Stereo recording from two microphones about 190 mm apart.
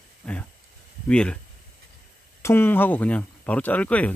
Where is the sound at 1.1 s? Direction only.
5° left (ahead or behind).